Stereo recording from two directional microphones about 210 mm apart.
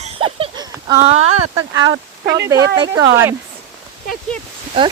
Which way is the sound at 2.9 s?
10° right (ahead or behind).